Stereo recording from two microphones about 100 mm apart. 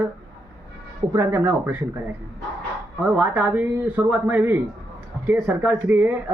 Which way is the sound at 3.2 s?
15° right (ahead or behind).